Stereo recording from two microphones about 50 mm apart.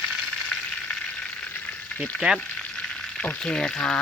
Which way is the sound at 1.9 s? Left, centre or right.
Left.